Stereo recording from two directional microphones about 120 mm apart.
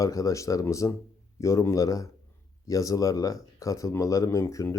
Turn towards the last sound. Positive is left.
turn(degrees=25)  # may be behind; listen again after turning